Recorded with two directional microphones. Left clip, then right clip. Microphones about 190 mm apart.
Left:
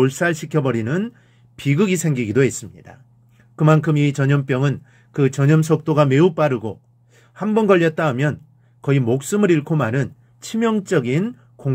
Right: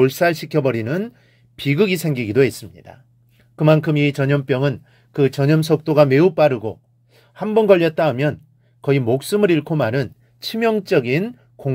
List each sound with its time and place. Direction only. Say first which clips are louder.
0.0 s speech: right 3 dB; 40° right (ahead or behind)